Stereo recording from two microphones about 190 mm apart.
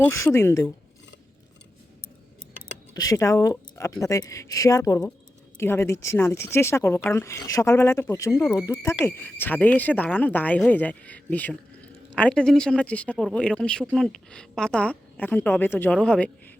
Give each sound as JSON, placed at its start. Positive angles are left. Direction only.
{"t": 0.0, "sound": "speech", "side_deg": 10}
{"t": 2.9, "sound": "a woman's voice", "side_deg": 20}